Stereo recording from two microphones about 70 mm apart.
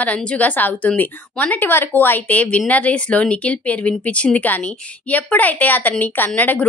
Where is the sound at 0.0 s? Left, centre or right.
Centre.